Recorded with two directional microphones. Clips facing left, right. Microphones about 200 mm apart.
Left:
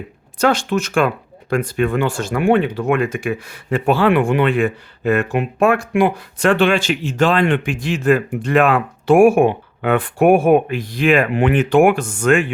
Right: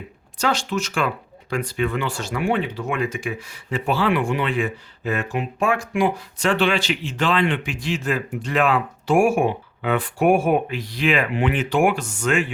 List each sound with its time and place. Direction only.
0.3 s speech: 55° left (ahead or behind)